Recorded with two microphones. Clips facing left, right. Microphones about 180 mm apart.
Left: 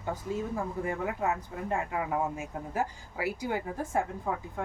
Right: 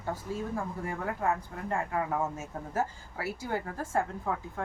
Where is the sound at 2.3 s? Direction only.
15° left (ahead or behind).